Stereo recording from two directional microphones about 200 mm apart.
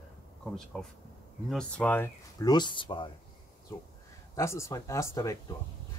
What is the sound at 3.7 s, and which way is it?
Speech, 10° left (ahead or behind).